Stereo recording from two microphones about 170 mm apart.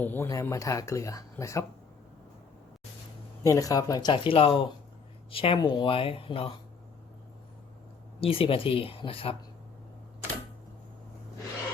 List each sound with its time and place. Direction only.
0.0 s speech: 10° left (ahead or behind)
3.4 s speech: 20° left (ahead or behind)
8.2 s speech: 35° left (ahead or behind)